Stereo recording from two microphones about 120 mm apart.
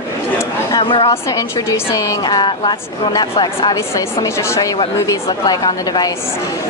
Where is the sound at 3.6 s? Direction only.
30° left (ahead or behind).